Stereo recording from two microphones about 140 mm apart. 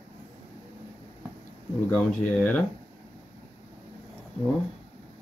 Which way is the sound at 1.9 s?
5° left (ahead or behind).